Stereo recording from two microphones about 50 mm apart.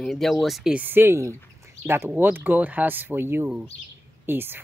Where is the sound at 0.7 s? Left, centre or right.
Right.